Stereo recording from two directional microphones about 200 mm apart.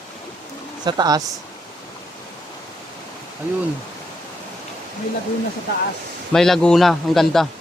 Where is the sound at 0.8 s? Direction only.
20° right (ahead or behind).